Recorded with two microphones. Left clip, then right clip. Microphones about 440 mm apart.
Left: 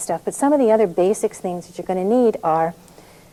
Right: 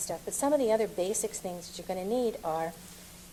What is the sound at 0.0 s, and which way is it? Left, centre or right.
A woman's voice, left.